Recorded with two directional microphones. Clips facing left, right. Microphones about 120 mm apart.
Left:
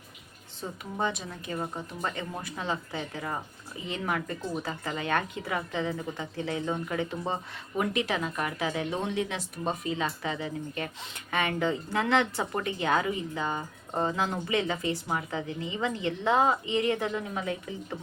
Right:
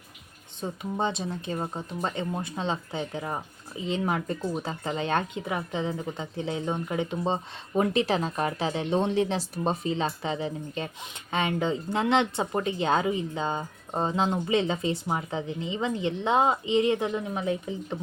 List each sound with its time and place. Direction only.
0.6 s speech: 25° right (ahead or behind)
7.8 s speech: 30° right (ahead or behind)